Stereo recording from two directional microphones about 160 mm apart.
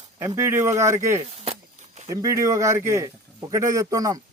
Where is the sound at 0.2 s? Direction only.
15° right (ahead or behind).